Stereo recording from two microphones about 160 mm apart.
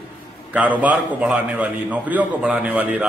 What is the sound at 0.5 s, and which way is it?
A man's voice, 10° right (ahead or behind).